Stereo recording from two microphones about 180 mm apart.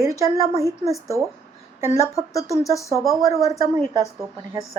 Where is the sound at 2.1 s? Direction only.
20° left (ahead or behind).